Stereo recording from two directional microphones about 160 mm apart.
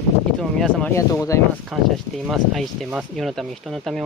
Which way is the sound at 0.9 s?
20° left (ahead or behind).